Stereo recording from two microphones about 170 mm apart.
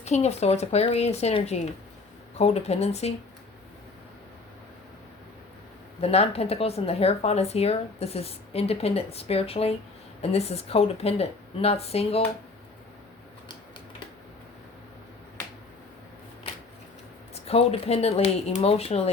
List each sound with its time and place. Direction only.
0.0 s speech: 40° left (ahead or behind)
6.0 s speech: 35° left (ahead or behind)
17.3 s speech: 35° left (ahead or behind)